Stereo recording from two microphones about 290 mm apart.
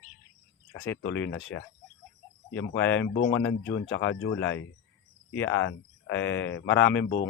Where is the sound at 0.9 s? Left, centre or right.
Left.